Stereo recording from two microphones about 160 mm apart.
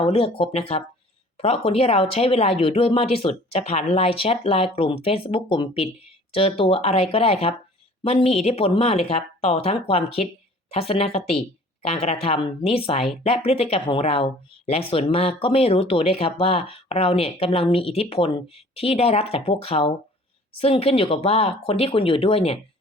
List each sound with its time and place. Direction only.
0.0 s speech: 35° left (ahead or behind)